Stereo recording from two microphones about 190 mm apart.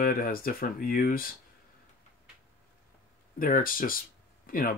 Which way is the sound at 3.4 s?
45° left (ahead or behind).